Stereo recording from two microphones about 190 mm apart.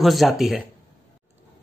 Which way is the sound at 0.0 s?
Centre (ahead or behind).